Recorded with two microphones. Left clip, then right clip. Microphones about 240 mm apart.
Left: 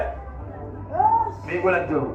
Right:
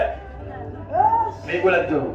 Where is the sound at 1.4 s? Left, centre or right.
Right.